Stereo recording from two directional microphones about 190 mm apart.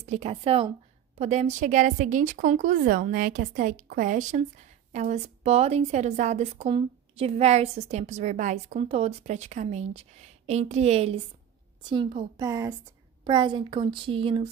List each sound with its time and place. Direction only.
0.0 s a woman's voice: 35° right (ahead or behind)